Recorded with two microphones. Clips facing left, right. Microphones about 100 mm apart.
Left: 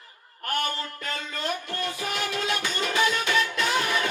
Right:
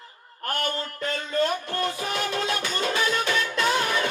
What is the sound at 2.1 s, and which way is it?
Music, 35° right (ahead or behind).